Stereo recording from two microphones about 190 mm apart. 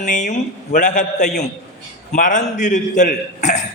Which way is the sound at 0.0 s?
40° left (ahead or behind).